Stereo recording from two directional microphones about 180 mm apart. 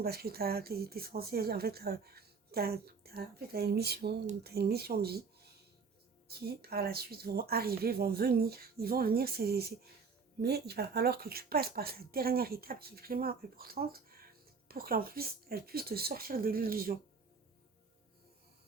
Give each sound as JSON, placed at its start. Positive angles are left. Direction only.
{"t": 0.0, "sound": "speech", "side_deg": -60}